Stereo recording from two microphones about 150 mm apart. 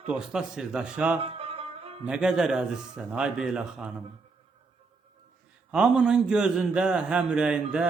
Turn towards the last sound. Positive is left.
turn(degrees=-5)  # may be behind; listen again after turning